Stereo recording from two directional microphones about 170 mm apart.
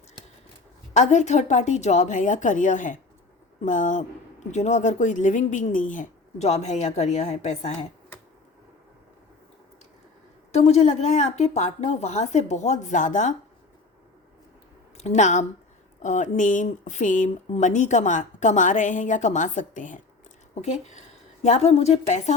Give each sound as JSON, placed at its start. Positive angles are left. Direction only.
{"t": 0.9, "sound": "speech", "side_deg": 45}
{"t": 10.5, "sound": "speech", "side_deg": 40}
{"t": 14.9, "sound": "a woman's voice", "side_deg": 40}